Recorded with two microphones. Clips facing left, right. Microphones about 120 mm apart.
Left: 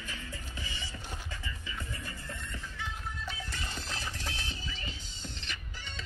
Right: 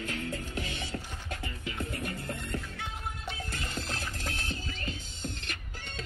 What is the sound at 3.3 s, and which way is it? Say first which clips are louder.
Music: right 2 dB; 50° right (ahead or behind).